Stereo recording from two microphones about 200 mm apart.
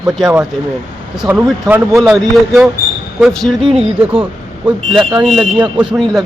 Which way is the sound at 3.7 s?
25° right (ahead or behind).